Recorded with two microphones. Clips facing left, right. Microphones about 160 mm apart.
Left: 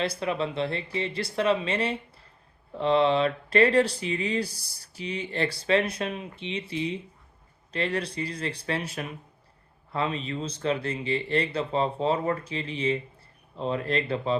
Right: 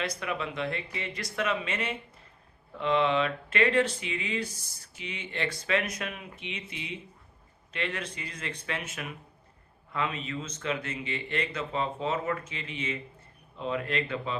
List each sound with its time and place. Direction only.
0.0 s speech: 30° left (ahead or behind)